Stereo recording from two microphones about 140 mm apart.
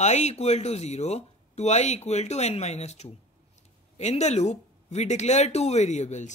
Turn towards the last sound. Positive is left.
turn(degrees=55)  # may be behind; listen again after turning